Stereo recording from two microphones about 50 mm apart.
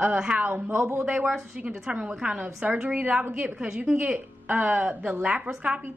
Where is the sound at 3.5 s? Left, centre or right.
Centre.